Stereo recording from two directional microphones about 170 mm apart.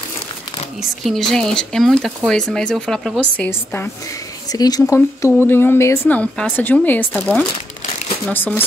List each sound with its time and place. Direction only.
0.7 s speech: centre (ahead or behind)
3.3 s speech: 15° left (ahead or behind)